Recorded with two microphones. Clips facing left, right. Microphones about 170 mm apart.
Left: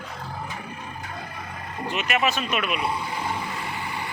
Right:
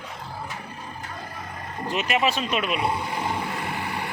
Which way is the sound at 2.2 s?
30° right (ahead or behind).